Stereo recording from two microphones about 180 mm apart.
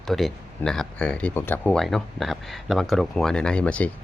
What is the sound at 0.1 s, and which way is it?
Speech, centre (ahead or behind).